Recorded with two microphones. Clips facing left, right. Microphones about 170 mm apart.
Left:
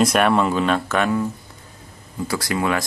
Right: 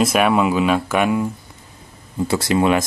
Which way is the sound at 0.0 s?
5° right (ahead or behind).